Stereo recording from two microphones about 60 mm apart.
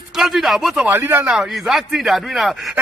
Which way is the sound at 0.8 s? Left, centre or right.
Right.